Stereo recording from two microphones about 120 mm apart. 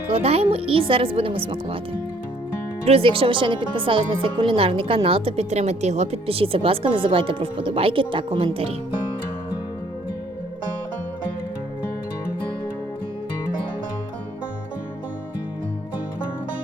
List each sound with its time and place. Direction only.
0.1 s speech: 55° right (ahead or behind)
2.8 s speech: 50° right (ahead or behind)